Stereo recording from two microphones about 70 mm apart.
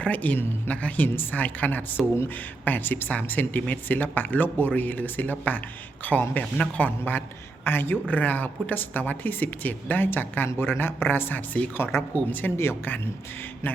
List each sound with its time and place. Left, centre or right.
0.0 s a woman's voice: left
11.8 s speech: left